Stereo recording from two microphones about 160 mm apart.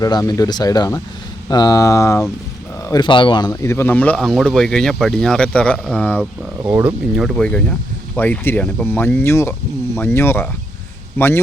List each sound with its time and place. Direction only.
0.0 s speech: 25° left (ahead or behind)
2.9 s speech: 30° left (ahead or behind); by 6.2 s 10° left (ahead or behind)
6.7 s speech: 10° right (ahead or behind)
7.3 s speech: 5° left (ahead or behind)